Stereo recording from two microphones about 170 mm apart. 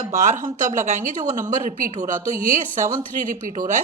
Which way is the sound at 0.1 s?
50° right (ahead or behind).